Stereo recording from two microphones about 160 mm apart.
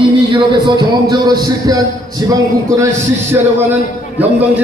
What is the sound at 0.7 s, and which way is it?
Speech, 25° right (ahead or behind).